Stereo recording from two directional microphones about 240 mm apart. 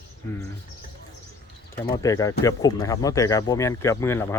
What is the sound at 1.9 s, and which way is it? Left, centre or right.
Speech, centre.